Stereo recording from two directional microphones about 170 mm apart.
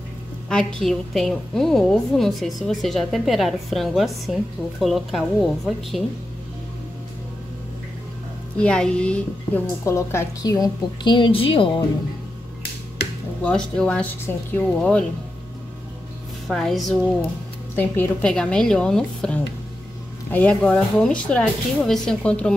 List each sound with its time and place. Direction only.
0.5 s a woman's voice: 5° left (ahead or behind)
8.5 s a woman's voice: 5° left (ahead or behind); by 11.8 s 30° left (ahead or behind)
13.4 s speech: 5° left (ahead or behind)
16.4 s a woman's voice: centre (ahead or behind)
17.7 s a woman's voice: 10° left (ahead or behind)